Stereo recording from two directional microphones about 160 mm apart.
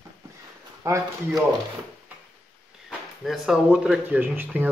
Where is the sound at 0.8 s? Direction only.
20° right (ahead or behind).